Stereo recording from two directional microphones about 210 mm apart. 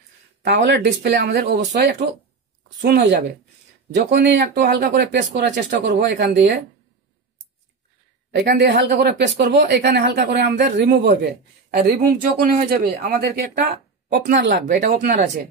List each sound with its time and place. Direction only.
0.4 s speech: 55° right (ahead or behind)
8.3 s speech: 50° right (ahead or behind)